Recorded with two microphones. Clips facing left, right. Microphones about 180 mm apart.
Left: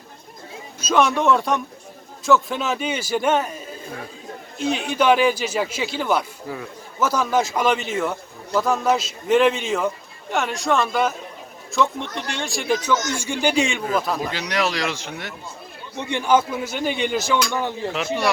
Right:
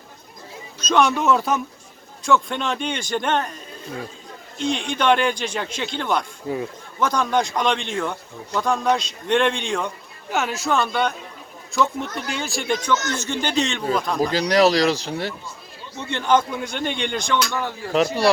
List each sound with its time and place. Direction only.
0.8 s a man's voice: 5° left (ahead or behind)
6.5 s speech: 25° right (ahead or behind)
7.0 s a man's voice: 5° left (ahead or behind)
14.3 s speech: 35° right (ahead or behind)
16.0 s a man's voice: 15° left (ahead or behind)
17.5 s speech: 15° left (ahead or behind)
17.9 s speech: 40° right (ahead or behind)